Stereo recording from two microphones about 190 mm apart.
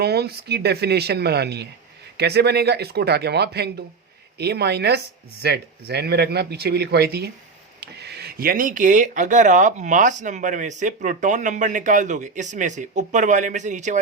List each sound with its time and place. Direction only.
0.0 s speech: 60° right (ahead or behind); by 14.0 s 40° right (ahead or behind)